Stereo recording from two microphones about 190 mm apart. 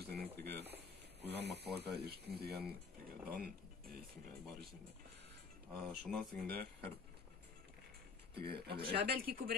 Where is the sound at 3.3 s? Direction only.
50° right (ahead or behind).